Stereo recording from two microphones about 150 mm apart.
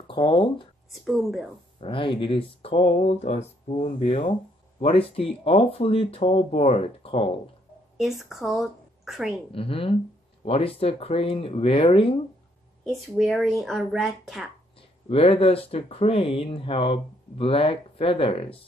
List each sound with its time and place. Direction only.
0.1 s speech: 35° left (ahead or behind)
1.0 s speech: centre (ahead or behind)
1.8 s speech: 35° left (ahead or behind)
8.0 s a woman's voice: centre (ahead or behind)
9.5 s speech: 40° left (ahead or behind)
12.8 s speech: centre (ahead or behind)
14.8 s speech: 40° left (ahead or behind)